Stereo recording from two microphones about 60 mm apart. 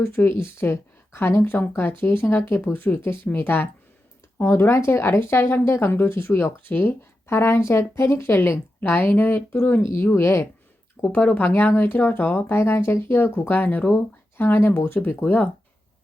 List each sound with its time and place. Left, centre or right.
0.0 s speech: left
8.8 s speech: left